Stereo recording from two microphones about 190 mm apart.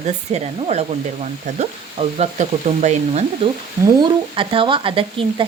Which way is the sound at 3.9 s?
25° right (ahead or behind).